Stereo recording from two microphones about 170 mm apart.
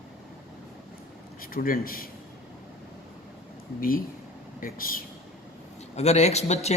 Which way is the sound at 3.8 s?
60° left (ahead or behind).